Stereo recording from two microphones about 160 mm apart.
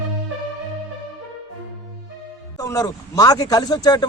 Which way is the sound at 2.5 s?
20° left (ahead or behind).